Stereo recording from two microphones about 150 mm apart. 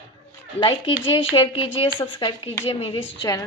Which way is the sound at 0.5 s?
35° left (ahead or behind).